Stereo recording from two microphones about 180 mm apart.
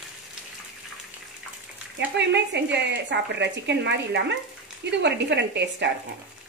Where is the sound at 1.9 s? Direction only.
80° right.